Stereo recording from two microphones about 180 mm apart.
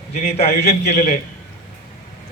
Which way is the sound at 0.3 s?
35° left (ahead or behind).